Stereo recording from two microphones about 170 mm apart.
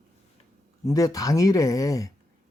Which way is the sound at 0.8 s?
20° left (ahead or behind).